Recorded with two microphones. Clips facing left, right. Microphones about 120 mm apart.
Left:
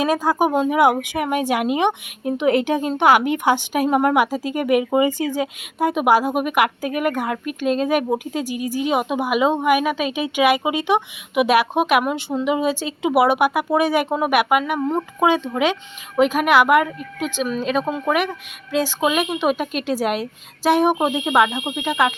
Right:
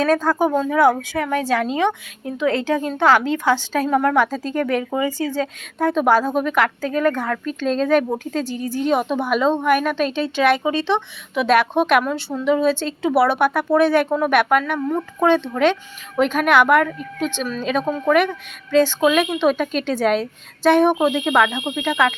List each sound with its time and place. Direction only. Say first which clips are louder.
0.0 s a woman's voice: right 1 dB; 10° left (ahead or behind)
14.8 s speech: left 1 dB; 25° left (ahead or behind)
15.2 s a woman's voice: right 2 dB; 10° left (ahead or behind)